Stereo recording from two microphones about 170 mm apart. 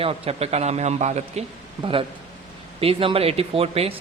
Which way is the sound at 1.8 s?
30° right (ahead or behind).